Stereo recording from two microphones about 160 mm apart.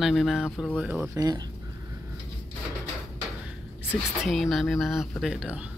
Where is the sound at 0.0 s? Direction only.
Centre (ahead or behind).